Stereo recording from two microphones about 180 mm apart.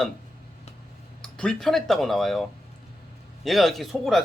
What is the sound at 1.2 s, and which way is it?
Speech, 5° left (ahead or behind).